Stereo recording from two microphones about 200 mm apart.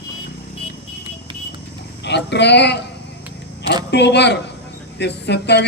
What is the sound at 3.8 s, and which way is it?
A man's voice, 60° left (ahead or behind).